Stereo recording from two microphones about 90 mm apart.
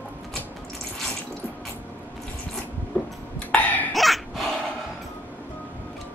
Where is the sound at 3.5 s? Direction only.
15° left (ahead or behind).